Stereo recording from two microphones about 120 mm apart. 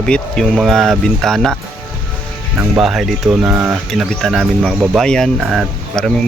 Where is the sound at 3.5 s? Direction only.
20° right (ahead or behind).